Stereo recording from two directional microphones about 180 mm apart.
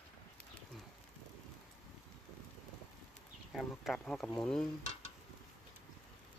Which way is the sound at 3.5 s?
5° left (ahead or behind).